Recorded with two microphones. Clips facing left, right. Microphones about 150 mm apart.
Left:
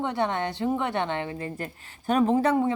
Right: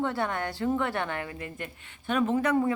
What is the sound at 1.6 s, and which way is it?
Speech, 35° left (ahead or behind).